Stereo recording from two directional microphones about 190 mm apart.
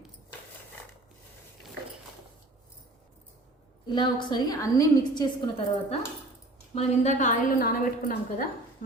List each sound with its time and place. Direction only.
3.8 s a woman's voice: 25° left (ahead or behind)
6.7 s a woman's voice: 35° left (ahead or behind)